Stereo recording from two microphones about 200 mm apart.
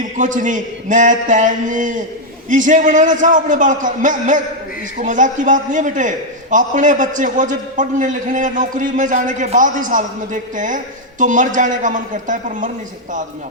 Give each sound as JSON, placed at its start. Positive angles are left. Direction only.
{"t": 0.2, "sound": "a man's voice", "side_deg": -40}